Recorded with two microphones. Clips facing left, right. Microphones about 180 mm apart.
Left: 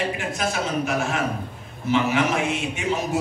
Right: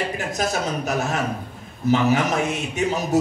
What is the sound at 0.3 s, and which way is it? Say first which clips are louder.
A man's voice: right 1 dB; 40° right (ahead or behind).